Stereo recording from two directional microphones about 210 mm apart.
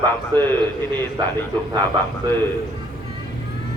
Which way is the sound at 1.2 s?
20° right (ahead or behind).